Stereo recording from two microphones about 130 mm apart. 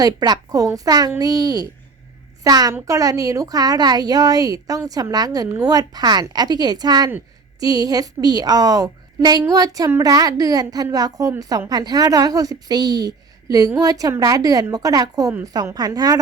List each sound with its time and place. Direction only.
0.0 s a woman's voice: 30° right (ahead or behind)